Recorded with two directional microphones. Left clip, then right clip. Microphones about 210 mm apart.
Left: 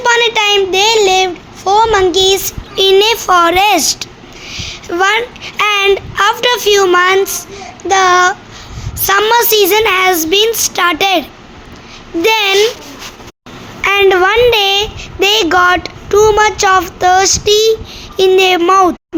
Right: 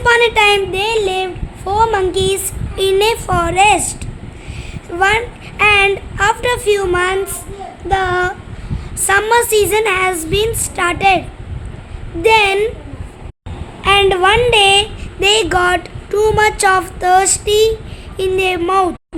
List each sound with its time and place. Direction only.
0.0 s speech: centre (ahead or behind)
12.2 s speech: 5° left (ahead or behind)
13.8 s speech: 25° left (ahead or behind)